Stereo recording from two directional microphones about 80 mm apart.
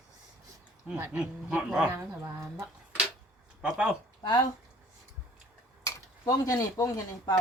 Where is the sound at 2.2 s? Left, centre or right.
Right.